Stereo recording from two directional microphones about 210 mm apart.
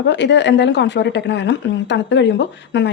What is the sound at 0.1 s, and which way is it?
A woman's voice, 55° left (ahead or behind).